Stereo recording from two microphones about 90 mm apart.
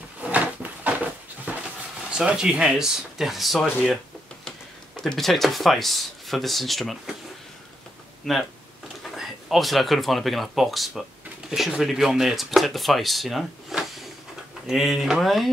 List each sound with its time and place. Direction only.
0.2 s a sound: 15° right (ahead or behind)
2.0 s speech: 10° right (ahead or behind)
8.3 s speech: 5° left (ahead or behind)